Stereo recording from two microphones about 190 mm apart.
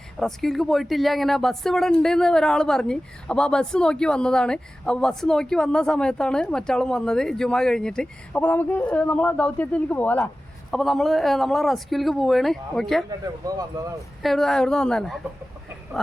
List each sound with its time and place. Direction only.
0.2 s speech: centre (ahead or behind)
13.1 s speech: 20° right (ahead or behind)
14.2 s speech: centre (ahead or behind)